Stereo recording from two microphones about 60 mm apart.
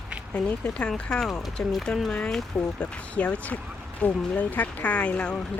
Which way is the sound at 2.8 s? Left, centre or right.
Left.